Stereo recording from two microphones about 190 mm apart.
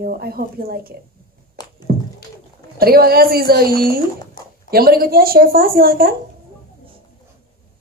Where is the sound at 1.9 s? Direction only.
50° right (ahead or behind).